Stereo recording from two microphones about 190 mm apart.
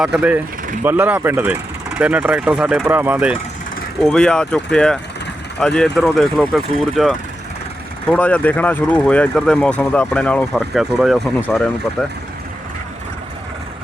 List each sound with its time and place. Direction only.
0.0 s speech: 5° right (ahead or behind)
4.0 s speech: 5° left (ahead or behind)